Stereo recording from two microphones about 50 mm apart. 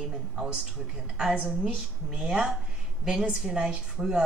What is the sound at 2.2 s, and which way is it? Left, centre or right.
Speech, centre.